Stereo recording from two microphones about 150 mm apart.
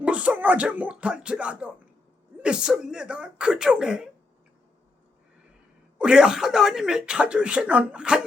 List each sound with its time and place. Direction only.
0.0 s speech: 10° right (ahead or behind)
6.0 s speech: 5° right (ahead or behind)